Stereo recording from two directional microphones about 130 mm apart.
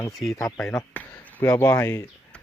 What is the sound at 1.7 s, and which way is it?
Speech, 20° left (ahead or behind).